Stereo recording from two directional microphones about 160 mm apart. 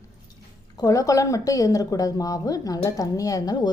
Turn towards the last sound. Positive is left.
turn(degrees=25)  # may be behind; listen again after turning